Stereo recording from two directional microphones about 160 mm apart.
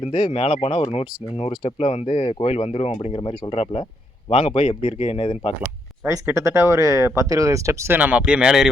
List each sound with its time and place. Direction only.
0.0 s speech: 40° left (ahead or behind)
6.1 s speech: 20° right (ahead or behind)